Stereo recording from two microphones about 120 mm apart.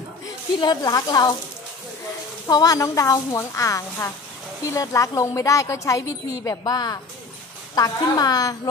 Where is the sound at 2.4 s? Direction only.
30° left (ahead or behind).